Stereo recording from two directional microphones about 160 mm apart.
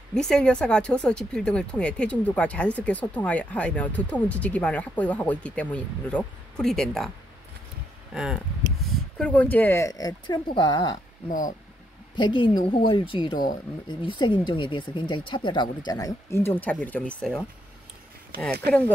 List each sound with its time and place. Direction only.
0.1 s speech: 5° left (ahead or behind)
8.1 s speech: 5° right (ahead or behind)
9.2 s speech: 10° left (ahead or behind); by 11.0 s 25° left (ahead or behind)
11.2 s speech: 60° left (ahead or behind)
12.2 s a woman's voice: 30° left (ahead or behind); by 17.5 s 5° left (ahead or behind)